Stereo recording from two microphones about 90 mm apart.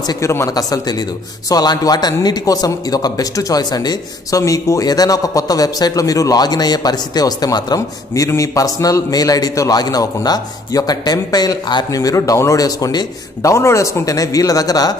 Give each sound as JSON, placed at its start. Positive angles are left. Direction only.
{"t": 0.0, "sound": "a man's voice", "side_deg": 45}